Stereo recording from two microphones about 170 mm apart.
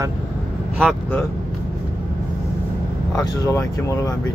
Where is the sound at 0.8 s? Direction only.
5° left (ahead or behind).